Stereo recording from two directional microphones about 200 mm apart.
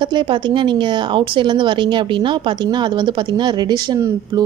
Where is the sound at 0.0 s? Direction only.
25° right (ahead or behind).